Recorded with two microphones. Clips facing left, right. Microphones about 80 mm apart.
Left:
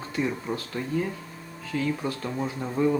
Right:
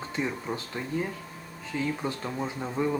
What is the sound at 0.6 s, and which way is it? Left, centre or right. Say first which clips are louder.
Speech: left 3 dB; centre.